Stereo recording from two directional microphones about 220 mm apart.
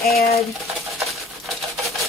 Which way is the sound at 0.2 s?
45° left (ahead or behind).